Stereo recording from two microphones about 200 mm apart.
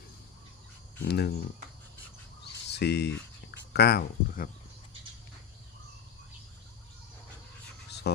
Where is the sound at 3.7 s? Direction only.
55° left (ahead or behind).